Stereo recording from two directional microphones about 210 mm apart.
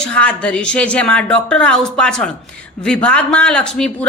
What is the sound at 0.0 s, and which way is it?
A woman's voice, 5° left (ahead or behind).